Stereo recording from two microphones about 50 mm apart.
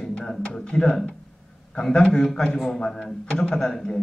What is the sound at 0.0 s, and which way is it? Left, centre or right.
Music, centre.